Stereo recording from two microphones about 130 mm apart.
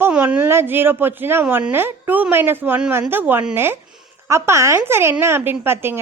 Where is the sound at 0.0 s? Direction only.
10° right (ahead or behind).